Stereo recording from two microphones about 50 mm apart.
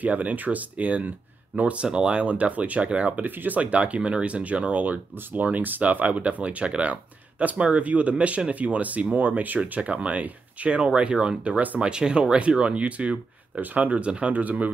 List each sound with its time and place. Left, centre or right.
0.0 s speech: right
3.3 s speech: right
11.8 s speech: centre